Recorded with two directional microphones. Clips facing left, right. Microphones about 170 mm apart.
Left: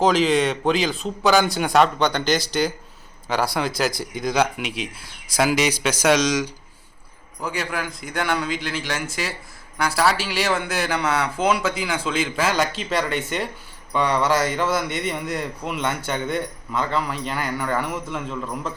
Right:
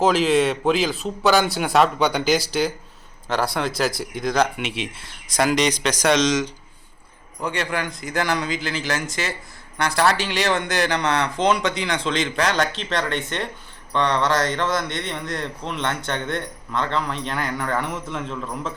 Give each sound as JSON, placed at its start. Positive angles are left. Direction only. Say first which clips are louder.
{"t": 0.0, "sound": "a man's voice", "louder": "even", "side_deg": 0}